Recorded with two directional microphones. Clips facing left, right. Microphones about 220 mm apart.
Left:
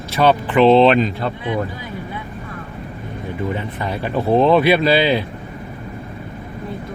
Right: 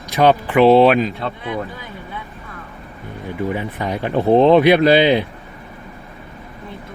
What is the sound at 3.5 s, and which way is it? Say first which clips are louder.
Speech: right 3 dB; 15° right (ahead or behind).